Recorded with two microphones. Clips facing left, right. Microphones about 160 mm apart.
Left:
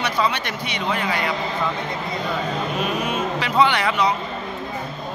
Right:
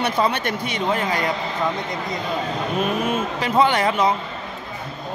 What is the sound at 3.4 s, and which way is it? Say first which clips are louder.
Speech: right 2 dB; 45° right (ahead or behind).